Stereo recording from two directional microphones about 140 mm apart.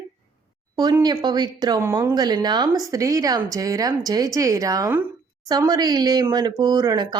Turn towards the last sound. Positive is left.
turn(degrees=-30)  # may be behind; listen again after turning